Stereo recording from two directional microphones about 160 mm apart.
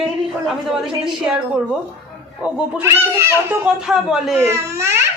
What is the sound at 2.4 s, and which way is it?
Speech, 15° right (ahead or behind).